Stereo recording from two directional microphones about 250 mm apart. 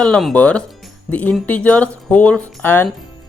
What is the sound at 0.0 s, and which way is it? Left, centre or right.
Speech, centre.